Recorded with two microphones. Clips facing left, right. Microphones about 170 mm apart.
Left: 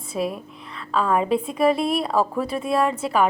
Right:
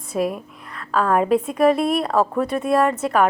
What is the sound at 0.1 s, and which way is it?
A woman's voice, centre (ahead or behind).